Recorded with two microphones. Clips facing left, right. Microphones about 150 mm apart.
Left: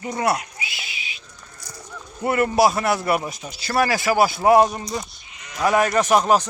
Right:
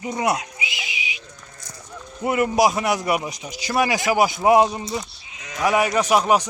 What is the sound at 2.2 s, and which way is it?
A man's voice, 15° right (ahead or behind).